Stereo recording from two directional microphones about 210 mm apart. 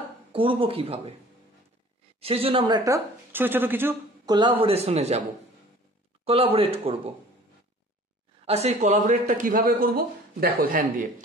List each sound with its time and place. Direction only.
0.3 s speech: 25° right (ahead or behind)
2.1 s speech: 25° right (ahead or behind); by 4.4 s 10° right (ahead or behind)
4.6 s speech: 30° right (ahead or behind)
6.2 s speech: 25° right (ahead or behind)
8.5 s a man's voice: 30° right (ahead or behind)